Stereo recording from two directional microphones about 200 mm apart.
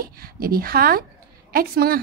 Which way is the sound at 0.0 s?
50° right (ahead or behind).